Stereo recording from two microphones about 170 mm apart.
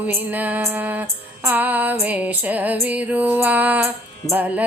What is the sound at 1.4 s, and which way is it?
Female singing, 10° right (ahead or behind).